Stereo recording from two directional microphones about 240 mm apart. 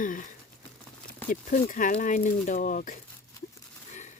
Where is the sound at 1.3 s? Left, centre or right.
Left.